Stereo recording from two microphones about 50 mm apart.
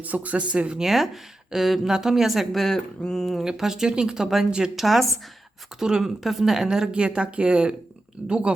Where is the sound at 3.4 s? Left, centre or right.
Centre.